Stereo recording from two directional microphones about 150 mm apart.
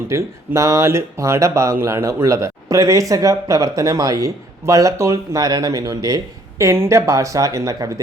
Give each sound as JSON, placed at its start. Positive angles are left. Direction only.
{"t": 0.1, "sound": "speech", "side_deg": -20}